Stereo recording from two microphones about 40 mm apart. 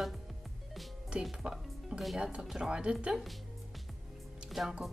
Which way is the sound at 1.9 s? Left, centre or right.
Centre.